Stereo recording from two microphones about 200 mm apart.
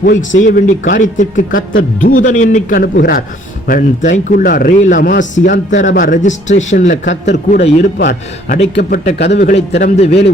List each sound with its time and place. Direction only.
0.1 s speech: 70° left (ahead or behind)
0.3 s a man's voice: 40° left (ahead or behind)
7.9 s a man's voice: 50° left (ahead or behind)
9.4 s a man's voice: 35° left (ahead or behind)